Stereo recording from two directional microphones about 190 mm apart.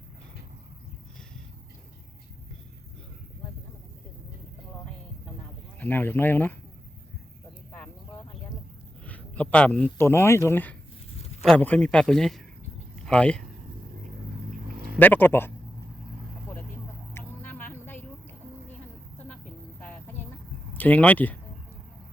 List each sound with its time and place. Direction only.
5.8 s speech: 10° left (ahead or behind)
9.0 s a man's voice: 10° left (ahead or behind)
14.9 s speech: 10° left (ahead or behind)
17.2 s a sound: 10° left (ahead or behind)
19.8 s a sound: 10° left (ahead or behind)
20.7 s speech: 10° left (ahead or behind)